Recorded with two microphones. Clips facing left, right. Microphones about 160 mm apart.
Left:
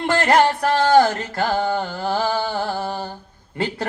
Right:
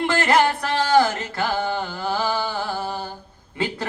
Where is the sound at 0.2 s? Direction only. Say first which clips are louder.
Left 4 dB; 50° left (ahead or behind).